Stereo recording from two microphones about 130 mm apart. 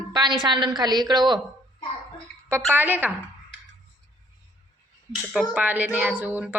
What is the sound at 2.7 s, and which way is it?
Speech, 15° right (ahead or behind).